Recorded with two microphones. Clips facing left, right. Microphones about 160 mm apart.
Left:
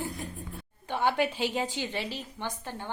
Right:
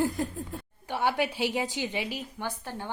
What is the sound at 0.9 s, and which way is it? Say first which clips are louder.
A woman's voice: left 1 dB; 10° right (ahead or behind).